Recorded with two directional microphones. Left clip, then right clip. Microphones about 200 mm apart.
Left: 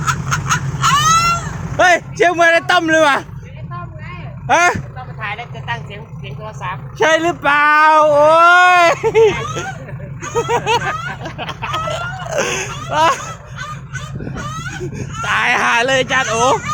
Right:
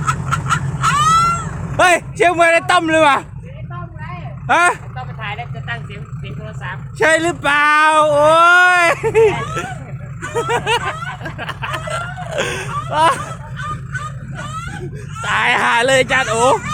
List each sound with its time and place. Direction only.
0.0 s a sound: 25° left (ahead or behind)
1.7 s speech: 5° right (ahead or behind)
4.4 s speech: 5° right (ahead or behind)
4.9 s vehicle: 15° left (ahead or behind)
6.4 s speech: centre (ahead or behind)
10.3 s chicken: centre (ahead or behind)
14.9 s speech: centre (ahead or behind)